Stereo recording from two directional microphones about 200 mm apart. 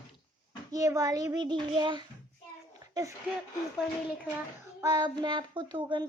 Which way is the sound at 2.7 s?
15° right (ahead or behind).